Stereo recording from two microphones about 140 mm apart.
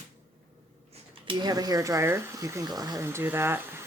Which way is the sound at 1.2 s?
30° right (ahead or behind).